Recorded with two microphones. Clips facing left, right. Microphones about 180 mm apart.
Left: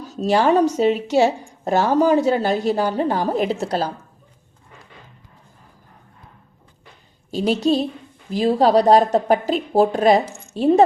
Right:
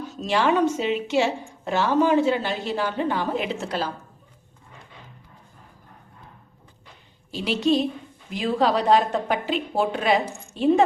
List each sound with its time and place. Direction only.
0.0 s a woman's voice: 40° left (ahead or behind)
7.3 s a woman's voice: 40° left (ahead or behind)